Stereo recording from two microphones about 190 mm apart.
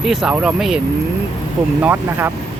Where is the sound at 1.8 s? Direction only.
10° right (ahead or behind).